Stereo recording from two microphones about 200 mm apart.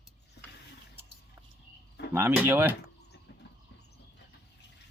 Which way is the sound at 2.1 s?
10° right (ahead or behind).